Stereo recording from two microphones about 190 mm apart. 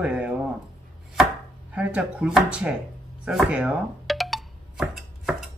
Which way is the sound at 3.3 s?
5° right (ahead or behind).